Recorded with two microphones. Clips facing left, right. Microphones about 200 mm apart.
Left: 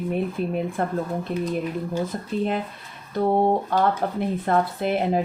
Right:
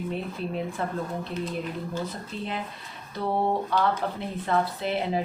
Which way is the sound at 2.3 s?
50° left (ahead or behind).